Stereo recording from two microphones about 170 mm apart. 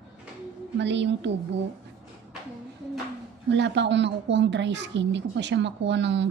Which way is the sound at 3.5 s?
90° right.